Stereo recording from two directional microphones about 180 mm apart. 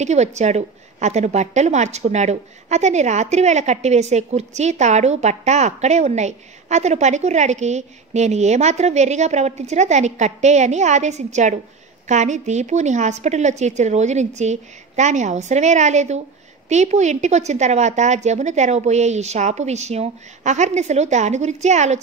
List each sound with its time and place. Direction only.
0.0 s a woman's voice: 40° right (ahead or behind)